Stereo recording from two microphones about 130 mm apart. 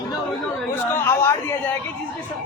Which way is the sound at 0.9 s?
20° left (ahead or behind).